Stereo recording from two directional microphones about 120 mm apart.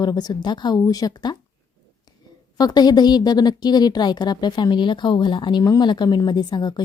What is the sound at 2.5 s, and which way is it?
A woman's voice, 35° left (ahead or behind).